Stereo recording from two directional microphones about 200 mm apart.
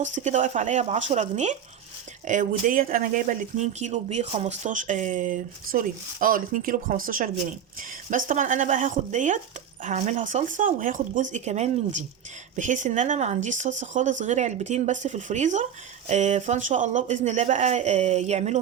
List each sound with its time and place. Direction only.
0.0 s speech: 40° right (ahead or behind)